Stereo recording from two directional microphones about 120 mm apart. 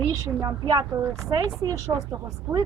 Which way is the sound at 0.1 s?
30° right (ahead or behind).